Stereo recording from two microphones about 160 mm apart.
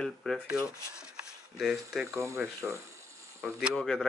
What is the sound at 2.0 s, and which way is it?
Speech, 20° right (ahead or behind).